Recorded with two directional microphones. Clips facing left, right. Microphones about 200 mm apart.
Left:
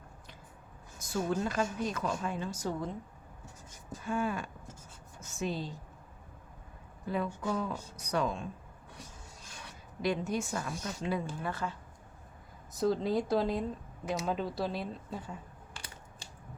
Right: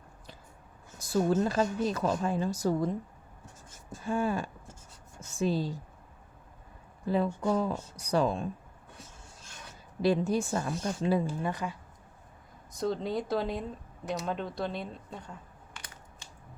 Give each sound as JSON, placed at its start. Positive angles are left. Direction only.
{"t": 0.9, "sound": "a woman's voice", "side_deg": -35}
{"t": 4.0, "sound": "a woman's voice", "side_deg": -30}
{"t": 7.1, "sound": "a woman's voice", "side_deg": -30}
{"t": 10.0, "sound": "a woman's voice", "side_deg": -30}
{"t": 11.4, "sound": "speech", "side_deg": -15}
{"t": 12.7, "sound": "speech", "side_deg": 0}